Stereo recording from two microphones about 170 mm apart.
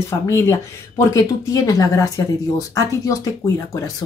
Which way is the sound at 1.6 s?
20° left (ahead or behind).